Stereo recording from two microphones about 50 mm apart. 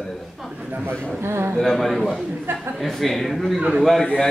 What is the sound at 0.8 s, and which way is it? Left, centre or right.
Speech, left.